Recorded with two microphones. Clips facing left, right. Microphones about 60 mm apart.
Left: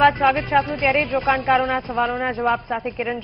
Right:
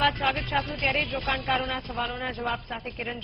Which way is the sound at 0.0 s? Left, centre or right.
Left.